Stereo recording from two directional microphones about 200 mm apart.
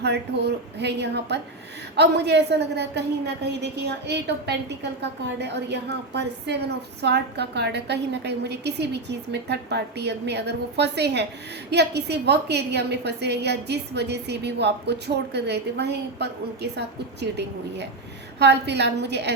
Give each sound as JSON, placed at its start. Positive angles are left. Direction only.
{"t": 0.0, "sound": "a woman's voice", "side_deg": -55}